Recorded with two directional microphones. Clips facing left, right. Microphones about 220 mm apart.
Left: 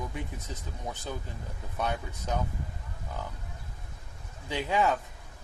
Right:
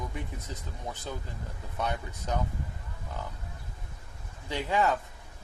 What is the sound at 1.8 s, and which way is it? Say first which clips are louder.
Speech: left 1 dB; 5° left (ahead or behind).